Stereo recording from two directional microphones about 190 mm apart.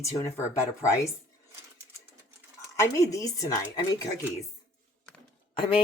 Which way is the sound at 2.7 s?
15° left (ahead or behind).